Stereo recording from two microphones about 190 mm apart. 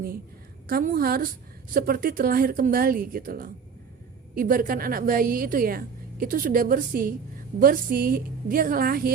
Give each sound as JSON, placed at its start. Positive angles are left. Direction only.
{"t": 0.7, "sound": "a woman's voice", "side_deg": -50}